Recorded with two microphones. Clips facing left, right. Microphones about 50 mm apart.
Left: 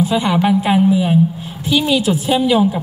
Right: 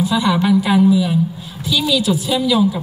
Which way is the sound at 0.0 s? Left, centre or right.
Left.